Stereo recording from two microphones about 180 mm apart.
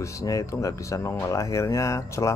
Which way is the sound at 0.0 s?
20° left (ahead or behind).